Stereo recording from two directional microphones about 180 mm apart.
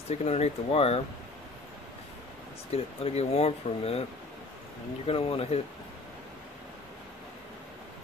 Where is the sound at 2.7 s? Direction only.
35° left (ahead or behind).